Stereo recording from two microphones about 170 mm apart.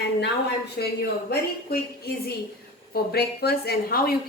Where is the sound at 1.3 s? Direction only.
65° left (ahead or behind).